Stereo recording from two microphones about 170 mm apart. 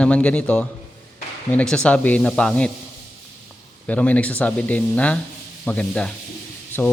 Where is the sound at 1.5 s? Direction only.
5° left (ahead or behind).